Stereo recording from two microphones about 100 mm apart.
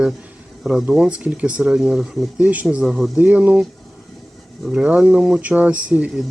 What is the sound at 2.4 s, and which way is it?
Speech, 15° right (ahead or behind).